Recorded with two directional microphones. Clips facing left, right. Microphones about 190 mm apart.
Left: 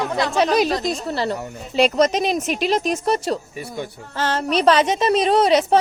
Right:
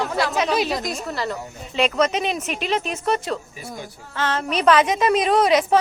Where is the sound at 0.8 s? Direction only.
30° left (ahead or behind).